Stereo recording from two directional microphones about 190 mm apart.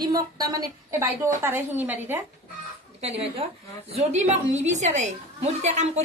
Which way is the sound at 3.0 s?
30° right (ahead or behind).